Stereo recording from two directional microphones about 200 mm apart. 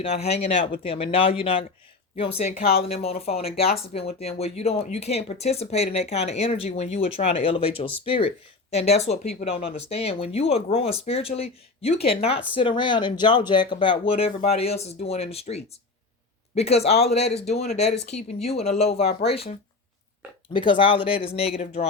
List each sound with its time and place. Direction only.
0.0 s speech: 30° left (ahead or behind)
2.8 s speech: 30° left (ahead or behind)